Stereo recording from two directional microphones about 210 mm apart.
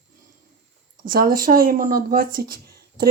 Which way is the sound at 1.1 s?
45° right (ahead or behind).